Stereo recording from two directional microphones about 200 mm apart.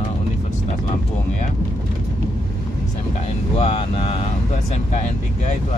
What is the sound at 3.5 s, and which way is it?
Speech, 30° left (ahead or behind).